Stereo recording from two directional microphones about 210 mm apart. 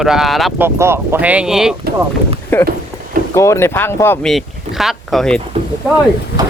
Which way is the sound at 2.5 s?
10° left (ahead or behind).